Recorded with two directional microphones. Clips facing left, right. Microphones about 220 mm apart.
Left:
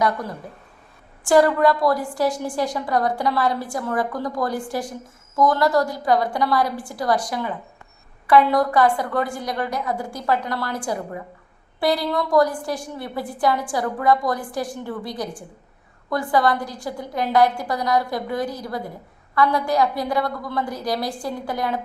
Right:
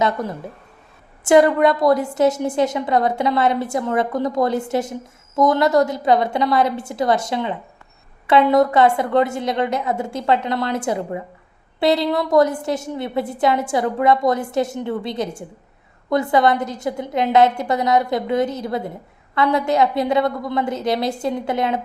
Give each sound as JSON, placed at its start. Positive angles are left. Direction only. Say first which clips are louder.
{"t": 0.0, "sound": "a woman's voice", "louder": "right 2 dB", "side_deg": -20}